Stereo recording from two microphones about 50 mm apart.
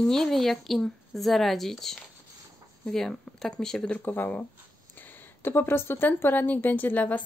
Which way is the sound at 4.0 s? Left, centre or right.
Left.